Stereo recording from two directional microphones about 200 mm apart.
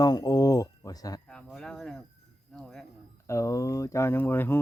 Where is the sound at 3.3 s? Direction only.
15° left (ahead or behind).